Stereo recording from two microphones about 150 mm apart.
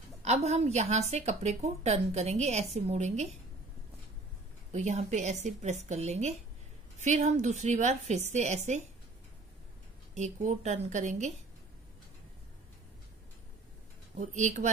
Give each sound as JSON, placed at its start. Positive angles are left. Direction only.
{"t": 0.2, "sound": "a woman's voice", "side_deg": -45}
{"t": 4.7, "sound": "a woman's voice", "side_deg": -50}
{"t": 10.1, "sound": "a woman's voice", "side_deg": -50}
{"t": 14.1, "sound": "a woman's voice", "side_deg": -55}